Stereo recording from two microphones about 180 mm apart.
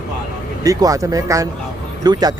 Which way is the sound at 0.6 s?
20° right (ahead or behind).